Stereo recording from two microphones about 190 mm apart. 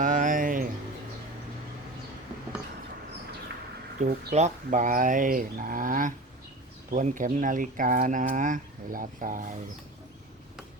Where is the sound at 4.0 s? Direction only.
55° right (ahead or behind).